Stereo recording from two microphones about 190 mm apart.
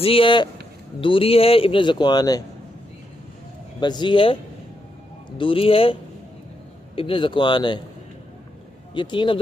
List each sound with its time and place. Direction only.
0.0 s speech: 30° left (ahead or behind)
3.8 s speech: 25° left (ahead or behind)
5.4 s speech: 30° left (ahead or behind)
9.0 s speech: 25° left (ahead or behind)